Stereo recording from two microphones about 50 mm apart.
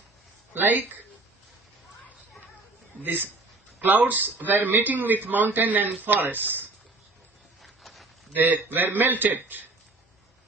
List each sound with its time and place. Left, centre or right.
0.5 s speech: right
3.8 s speech: right
7.6 s a sound: centre
8.4 s speech: right